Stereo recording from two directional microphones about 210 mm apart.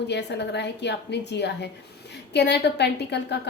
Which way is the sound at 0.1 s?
55° left (ahead or behind).